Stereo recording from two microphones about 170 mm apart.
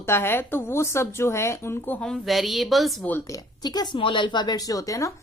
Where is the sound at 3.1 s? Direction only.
20° left (ahead or behind).